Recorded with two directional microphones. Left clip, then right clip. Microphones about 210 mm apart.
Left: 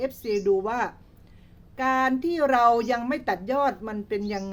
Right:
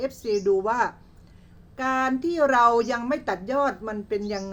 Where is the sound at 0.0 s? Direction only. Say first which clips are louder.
Right 1 dB; 10° left (ahead or behind).